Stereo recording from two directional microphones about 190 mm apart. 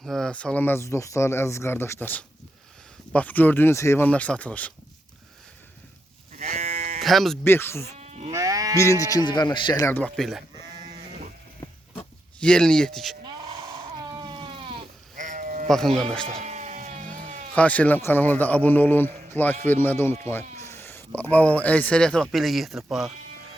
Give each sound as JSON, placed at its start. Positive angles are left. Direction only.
{"t": 0.0, "sound": "speech", "side_deg": 5}
{"t": 6.3, "sound": "sheep", "side_deg": -35}
{"t": 7.0, "sound": "speech", "side_deg": 0}
{"t": 7.4, "sound": "speech", "side_deg": 10}
{"t": 7.9, "sound": "sheep", "side_deg": -35}
{"t": 8.3, "sound": "sheep", "side_deg": -15}
{"t": 8.8, "sound": "speech", "side_deg": 15}
{"t": 12.4, "sound": "speech", "side_deg": 5}
{"t": 14.1, "sound": "baby cry", "side_deg": -25}
{"t": 15.1, "sound": "sheep", "side_deg": -45}
{"t": 15.6, "sound": "speech", "side_deg": 5}
{"t": 16.4, "sound": "sheep", "side_deg": -35}
{"t": 17.5, "sound": "speech", "side_deg": 5}